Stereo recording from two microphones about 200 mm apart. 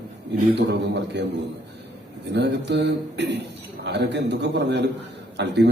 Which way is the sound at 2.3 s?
60° right (ahead or behind).